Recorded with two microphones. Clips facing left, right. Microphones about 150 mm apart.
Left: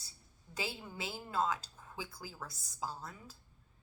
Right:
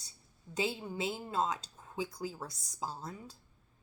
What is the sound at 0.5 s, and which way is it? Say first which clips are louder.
Speech: right 7 dB; 20° right (ahead or behind).